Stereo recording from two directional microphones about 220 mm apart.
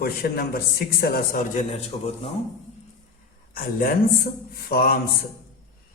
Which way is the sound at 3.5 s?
40° left (ahead or behind).